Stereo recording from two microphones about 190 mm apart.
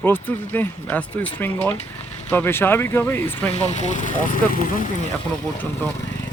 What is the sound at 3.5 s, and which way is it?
Speech, 35° left (ahead or behind).